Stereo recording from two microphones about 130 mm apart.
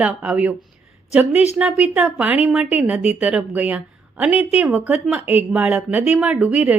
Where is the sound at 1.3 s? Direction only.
55° left (ahead or behind).